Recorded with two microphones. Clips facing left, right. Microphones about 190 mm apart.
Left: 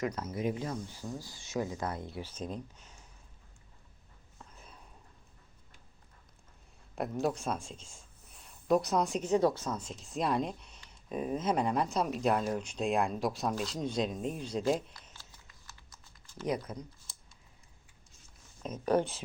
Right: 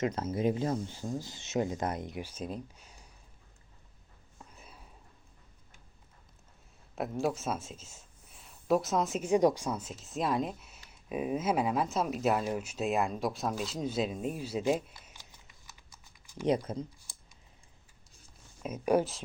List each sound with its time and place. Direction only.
0.0 s speech: 25° right (ahead or behind)
4.5 s a sound: 10° right (ahead or behind)
6.9 s speech: centre (ahead or behind)
16.5 s speech: 25° right (ahead or behind)
18.6 s speech: 10° right (ahead or behind)